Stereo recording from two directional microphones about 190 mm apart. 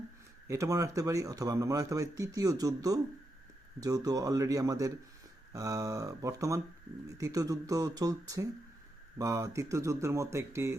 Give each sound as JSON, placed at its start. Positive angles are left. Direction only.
{"t": 0.4, "sound": "a man's voice", "side_deg": -15}